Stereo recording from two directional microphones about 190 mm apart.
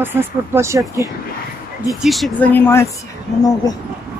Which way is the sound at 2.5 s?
10° left (ahead or behind).